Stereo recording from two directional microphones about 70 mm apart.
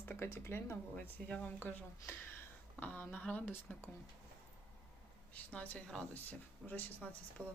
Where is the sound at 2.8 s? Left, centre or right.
Left.